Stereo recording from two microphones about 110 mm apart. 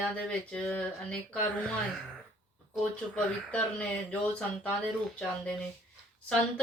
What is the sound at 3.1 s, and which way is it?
Speech, 10° left (ahead or behind).